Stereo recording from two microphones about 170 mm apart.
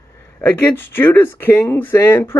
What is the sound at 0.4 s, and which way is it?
Speech, 10° left (ahead or behind).